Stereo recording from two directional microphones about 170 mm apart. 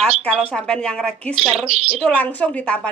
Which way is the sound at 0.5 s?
5° left (ahead or behind).